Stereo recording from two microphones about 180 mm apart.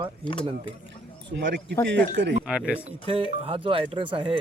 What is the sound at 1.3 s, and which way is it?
Speech, 75° right (ahead or behind).